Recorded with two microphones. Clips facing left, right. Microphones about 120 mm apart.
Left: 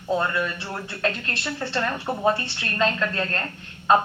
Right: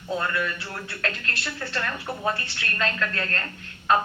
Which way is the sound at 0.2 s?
25° left (ahead or behind).